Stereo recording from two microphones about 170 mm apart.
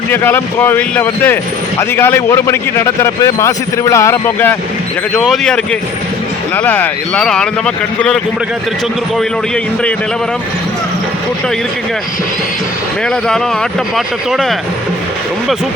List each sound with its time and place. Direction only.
0.1 s a man's voice: 10° left (ahead or behind)
5.1 s speech: centre (ahead or behind)
6.6 s speech: 10° left (ahead or behind)
13.1 s speech: 5° left (ahead or behind)